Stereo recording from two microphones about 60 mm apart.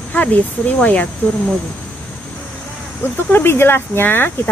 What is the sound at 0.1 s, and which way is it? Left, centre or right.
Speech, left.